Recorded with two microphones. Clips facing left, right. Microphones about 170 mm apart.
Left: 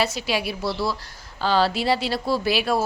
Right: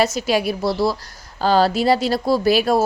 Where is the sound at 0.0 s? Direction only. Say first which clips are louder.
Right 6 dB; 45° right (ahead or behind).